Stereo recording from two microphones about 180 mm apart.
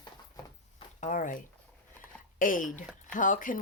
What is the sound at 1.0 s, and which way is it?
Speech, 45° left (ahead or behind).